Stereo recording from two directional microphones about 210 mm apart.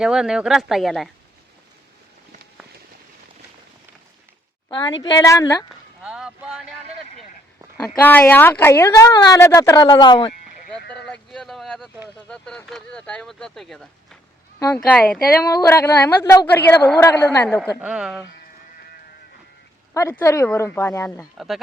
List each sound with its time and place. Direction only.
0.0 s speech: 5° right (ahead or behind)
5.0 s a woman's voice: 15° left (ahead or behind)
6.0 s boat: 5° right (ahead or behind)
7.8 s a woman's voice: 10° left (ahead or behind)
10.9 s a sound: 5° left (ahead or behind)
12.0 s speech: 5° left (ahead or behind)
14.6 s a woman's voice: 15° left (ahead or behind)
14.9 s speech: 5° left (ahead or behind)
15.4 s a woman's voice: 15° left (ahead or behind)
17.7 s speech: 5° right (ahead or behind)
19.9 s a woman's voice: 15° left (ahead or behind)
21.3 s speech: centre (ahead or behind)